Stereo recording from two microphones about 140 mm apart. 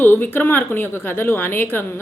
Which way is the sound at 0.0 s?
15° left (ahead or behind).